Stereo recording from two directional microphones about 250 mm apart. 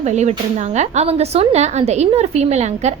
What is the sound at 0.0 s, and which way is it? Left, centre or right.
Speech, right.